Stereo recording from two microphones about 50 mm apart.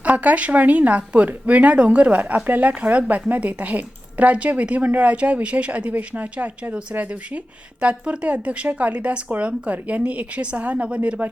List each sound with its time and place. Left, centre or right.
0.0 s speech: right